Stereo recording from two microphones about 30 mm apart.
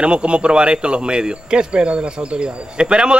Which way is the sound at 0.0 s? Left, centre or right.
Right.